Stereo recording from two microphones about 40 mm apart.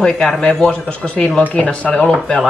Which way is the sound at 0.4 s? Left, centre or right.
Left.